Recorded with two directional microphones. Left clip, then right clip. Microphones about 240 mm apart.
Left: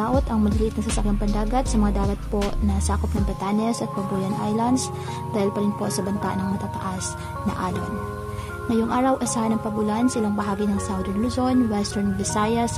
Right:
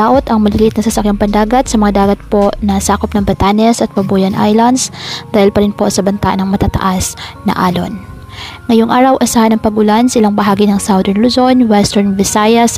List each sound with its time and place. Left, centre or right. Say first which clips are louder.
0.0 s a woman's voice: right 14 dB; right